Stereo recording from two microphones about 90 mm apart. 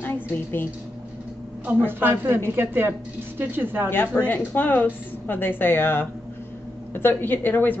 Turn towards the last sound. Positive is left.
turn(degrees=20)  # may be behind; listen again after turning